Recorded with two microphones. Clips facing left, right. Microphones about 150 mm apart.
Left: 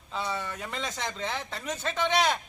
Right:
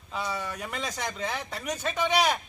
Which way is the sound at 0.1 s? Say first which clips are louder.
Even; 5° right (ahead or behind).